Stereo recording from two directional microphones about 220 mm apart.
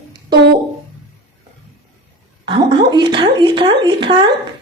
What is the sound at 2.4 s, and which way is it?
A woman's voice, 20° right (ahead or behind).